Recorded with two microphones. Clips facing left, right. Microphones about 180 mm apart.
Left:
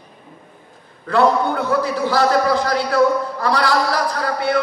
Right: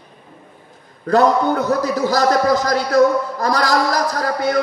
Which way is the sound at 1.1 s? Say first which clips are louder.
Right 2 dB; 40° right (ahead or behind).